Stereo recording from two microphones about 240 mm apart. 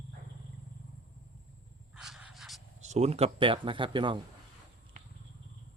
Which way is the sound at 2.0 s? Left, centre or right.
Centre.